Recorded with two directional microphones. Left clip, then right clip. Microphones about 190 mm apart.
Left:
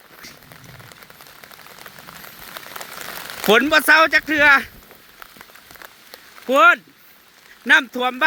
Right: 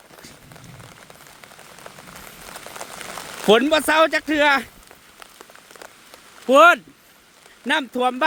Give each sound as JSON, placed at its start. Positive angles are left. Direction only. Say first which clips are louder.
{"t": 3.5, "sound": "speech", "louder": "left 3 dB", "side_deg": -10}
{"t": 6.5, "sound": "speech", "louder": "right 1 dB", "side_deg": -25}
{"t": 7.7, "sound": "speech", "louder": "left 5 dB", "side_deg": -15}